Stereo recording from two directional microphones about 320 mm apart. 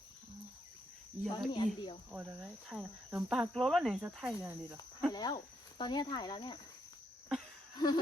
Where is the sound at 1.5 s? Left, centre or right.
Centre.